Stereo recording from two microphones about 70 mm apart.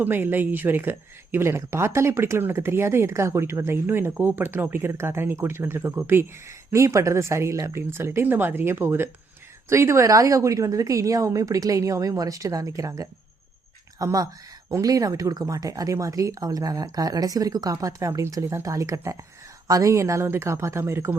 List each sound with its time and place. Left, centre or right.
0.0 s a woman's voice: right